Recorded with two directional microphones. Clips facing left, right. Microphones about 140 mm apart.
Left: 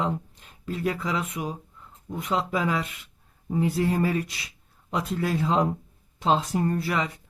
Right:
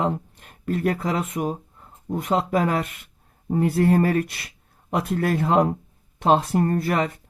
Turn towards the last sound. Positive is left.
turn(degrees=-55)  # may be behind; listen again after turning